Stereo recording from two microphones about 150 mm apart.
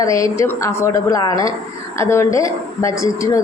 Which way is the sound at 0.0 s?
20° left (ahead or behind).